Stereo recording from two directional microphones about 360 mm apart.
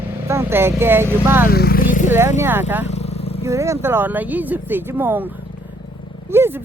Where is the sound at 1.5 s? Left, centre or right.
Left.